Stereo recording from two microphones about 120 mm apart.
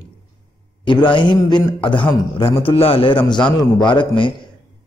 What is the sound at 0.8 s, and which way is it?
A man's voice, 40° left (ahead or behind).